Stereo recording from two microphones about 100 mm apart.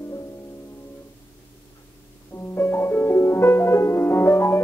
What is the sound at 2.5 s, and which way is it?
Music, 25° left (ahead or behind).